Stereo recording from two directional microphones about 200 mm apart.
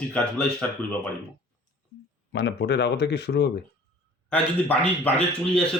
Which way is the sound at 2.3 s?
55° left (ahead or behind).